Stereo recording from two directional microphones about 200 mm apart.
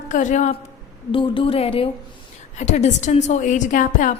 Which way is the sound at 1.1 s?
25° left (ahead or behind).